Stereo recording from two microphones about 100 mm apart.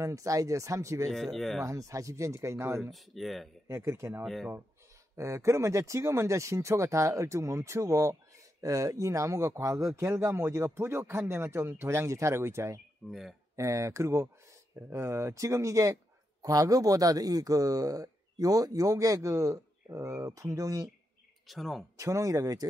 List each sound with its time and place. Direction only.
0.0 s speech: 30° right (ahead or behind)
1.1 s speech: centre (ahead or behind)
1.6 s speech: 35° right (ahead or behind)
2.8 s speech: centre (ahead or behind)
3.6 s speech: 25° right (ahead or behind)
4.2 s speech: centre (ahead or behind)
5.1 s speech: 30° right (ahead or behind)
21.5 s speech: centre (ahead or behind)
21.9 s speech: 35° right (ahead or behind)